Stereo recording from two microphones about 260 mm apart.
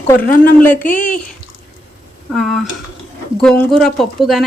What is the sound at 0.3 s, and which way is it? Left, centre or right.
Speech, left.